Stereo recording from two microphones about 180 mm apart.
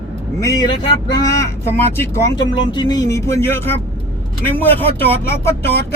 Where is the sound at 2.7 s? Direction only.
25° left (ahead or behind).